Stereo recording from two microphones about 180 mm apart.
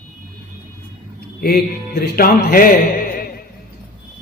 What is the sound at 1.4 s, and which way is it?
Music, 55° left (ahead or behind).